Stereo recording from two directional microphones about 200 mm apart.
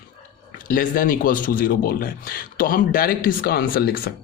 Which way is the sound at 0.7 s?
45° left (ahead or behind).